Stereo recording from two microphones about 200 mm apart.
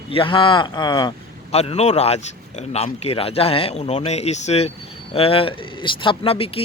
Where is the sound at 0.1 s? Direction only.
25° left (ahead or behind).